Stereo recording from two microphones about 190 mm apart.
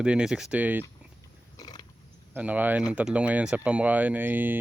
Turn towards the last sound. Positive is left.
turn(degrees=-10)  # may be behind; listen again after turning